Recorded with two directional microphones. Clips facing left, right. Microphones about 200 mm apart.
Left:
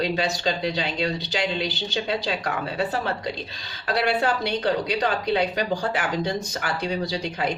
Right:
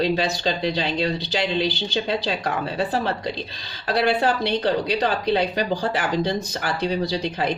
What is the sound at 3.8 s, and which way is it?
Speech, 35° right (ahead or behind).